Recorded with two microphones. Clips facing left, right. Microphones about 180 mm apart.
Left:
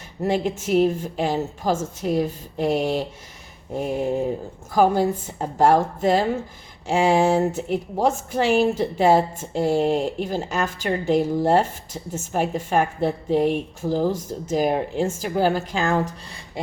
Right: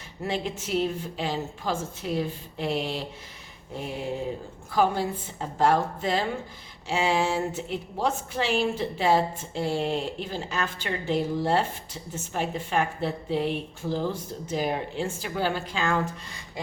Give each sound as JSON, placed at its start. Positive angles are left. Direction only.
{"t": 0.2, "sound": "a woman's voice", "side_deg": 45}